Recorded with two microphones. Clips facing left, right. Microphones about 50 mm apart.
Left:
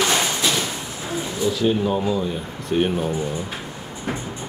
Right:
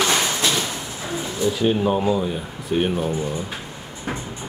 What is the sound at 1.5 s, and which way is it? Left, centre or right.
Speech, right.